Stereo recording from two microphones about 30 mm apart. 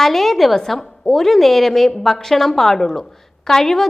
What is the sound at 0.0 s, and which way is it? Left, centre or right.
A woman's voice, centre.